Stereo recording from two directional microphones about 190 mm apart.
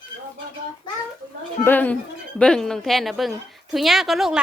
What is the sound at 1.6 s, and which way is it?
A woman's voice, 10° left (ahead or behind).